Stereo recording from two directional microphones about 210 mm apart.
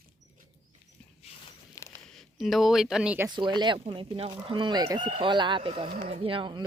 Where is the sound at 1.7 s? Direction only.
15° left (ahead or behind).